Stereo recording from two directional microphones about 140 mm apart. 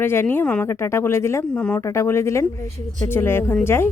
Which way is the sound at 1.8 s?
20° left (ahead or behind).